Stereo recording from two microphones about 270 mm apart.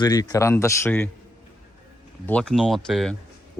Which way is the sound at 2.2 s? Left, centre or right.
Centre.